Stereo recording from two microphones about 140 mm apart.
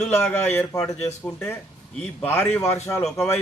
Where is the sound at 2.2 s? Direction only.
15° left (ahead or behind).